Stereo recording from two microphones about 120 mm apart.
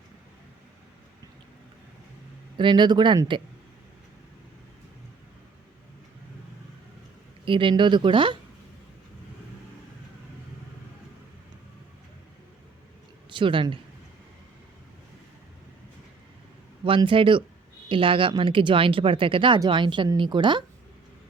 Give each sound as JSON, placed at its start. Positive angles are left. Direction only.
{"t": 2.6, "sound": "speech", "side_deg": -40}
{"t": 7.4, "sound": "speech", "side_deg": -45}
{"t": 13.3, "sound": "speech", "side_deg": -45}
{"t": 16.8, "sound": "speech", "side_deg": -45}